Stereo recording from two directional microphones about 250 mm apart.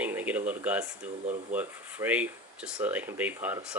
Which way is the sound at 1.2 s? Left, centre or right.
Right.